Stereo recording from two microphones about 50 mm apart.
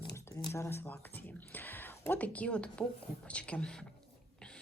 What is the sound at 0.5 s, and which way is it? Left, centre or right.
Speech, left.